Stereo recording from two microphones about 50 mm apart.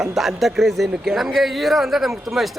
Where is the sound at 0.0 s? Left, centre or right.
Centre.